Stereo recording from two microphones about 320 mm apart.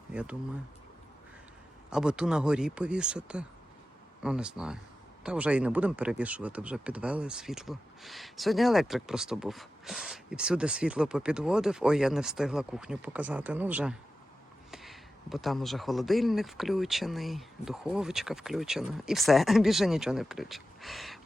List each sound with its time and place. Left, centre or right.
0.1 s speech: centre
1.9 s speech: centre